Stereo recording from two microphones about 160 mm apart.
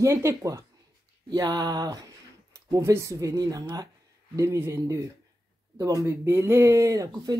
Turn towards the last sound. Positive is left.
turn(degrees=-20)  # may be behind; listen again after turning